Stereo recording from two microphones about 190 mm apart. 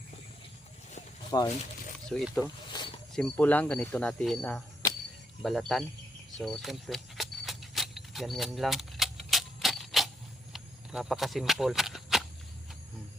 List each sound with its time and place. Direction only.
1.3 s speech: 25° left (ahead or behind)
2.0 s speech: centre (ahead or behind)
2.7 s wild animals: 20° left (ahead or behind)
3.1 s speech: 5° left (ahead or behind)
6.3 s keys jangling: centre (ahead or behind)
10.5 s a sound: centre (ahead or behind)